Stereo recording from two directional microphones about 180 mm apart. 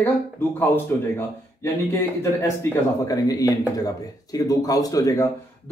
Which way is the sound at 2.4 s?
20° left (ahead or behind).